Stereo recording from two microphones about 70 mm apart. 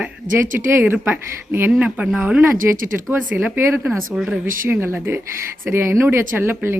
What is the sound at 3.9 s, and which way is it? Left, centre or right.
Speech, centre.